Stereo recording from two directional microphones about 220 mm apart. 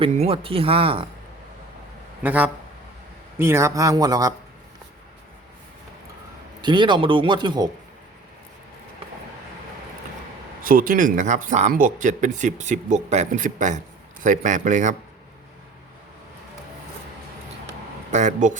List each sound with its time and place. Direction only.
0.0 s a man's voice: 25° right (ahead or behind)
2.2 s a man's voice: 5° right (ahead or behind)
6.6 s a man's voice: 20° right (ahead or behind)
10.7 s speech: 40° right (ahead or behind)
18.1 s speech: 35° right (ahead or behind)